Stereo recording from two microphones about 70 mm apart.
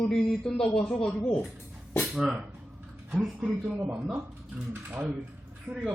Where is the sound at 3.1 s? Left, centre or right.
Centre.